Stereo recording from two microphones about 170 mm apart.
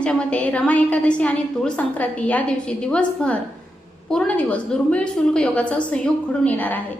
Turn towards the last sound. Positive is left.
turn(degrees=10)  # may be behind; listen again after turning